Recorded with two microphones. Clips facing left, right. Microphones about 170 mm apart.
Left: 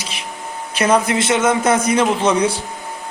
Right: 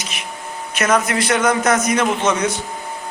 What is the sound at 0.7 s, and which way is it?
A man's voice, 30° left (ahead or behind).